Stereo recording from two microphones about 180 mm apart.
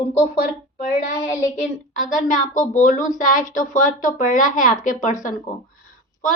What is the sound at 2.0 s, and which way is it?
A woman's voice, 45° left (ahead or behind).